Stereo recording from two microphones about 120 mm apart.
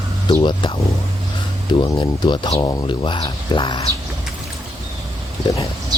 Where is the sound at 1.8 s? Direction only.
35° left (ahead or behind).